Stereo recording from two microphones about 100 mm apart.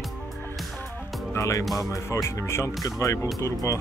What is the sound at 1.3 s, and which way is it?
Speech, 30° left (ahead or behind).